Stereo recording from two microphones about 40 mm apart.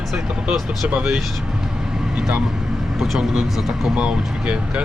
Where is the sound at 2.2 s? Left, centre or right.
Centre.